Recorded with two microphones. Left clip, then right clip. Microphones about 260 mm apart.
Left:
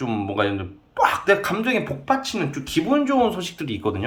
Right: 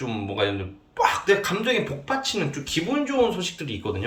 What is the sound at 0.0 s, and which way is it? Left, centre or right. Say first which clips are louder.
Speech: left 3 dB; centre.